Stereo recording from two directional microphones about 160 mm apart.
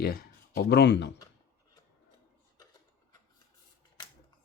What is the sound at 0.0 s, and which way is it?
Speech, 70° left (ahead or behind).